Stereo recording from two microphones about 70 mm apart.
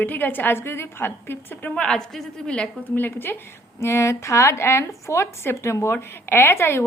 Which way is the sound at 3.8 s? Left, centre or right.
Left.